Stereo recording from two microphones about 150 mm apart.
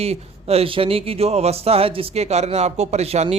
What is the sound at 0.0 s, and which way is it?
Speech, 45° right (ahead or behind).